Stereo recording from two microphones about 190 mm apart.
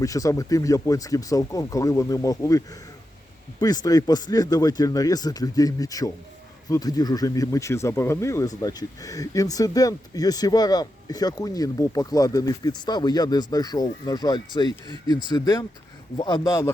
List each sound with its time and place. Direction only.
0.0 s speech: 15° left (ahead or behind)